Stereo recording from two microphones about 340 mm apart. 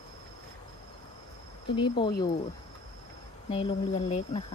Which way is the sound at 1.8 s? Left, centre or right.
Centre.